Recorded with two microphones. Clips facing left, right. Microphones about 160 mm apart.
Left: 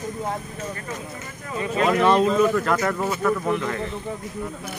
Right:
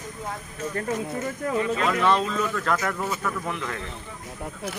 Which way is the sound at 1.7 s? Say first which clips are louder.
Left 7 dB; 20° left (ahead or behind).